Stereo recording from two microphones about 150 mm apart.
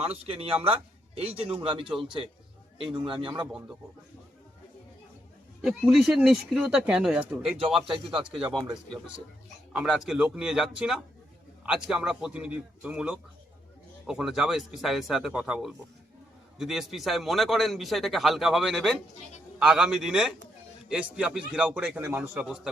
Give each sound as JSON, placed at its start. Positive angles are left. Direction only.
{"t": 0.1, "sound": "a man's voice", "side_deg": -40}
{"t": 3.2, "sound": "speech", "side_deg": -5}
{"t": 5.6, "sound": "speech", "side_deg": -5}
{"t": 7.6, "sound": "speech", "side_deg": -35}
{"t": 8.2, "sound": "a man's voice", "side_deg": -5}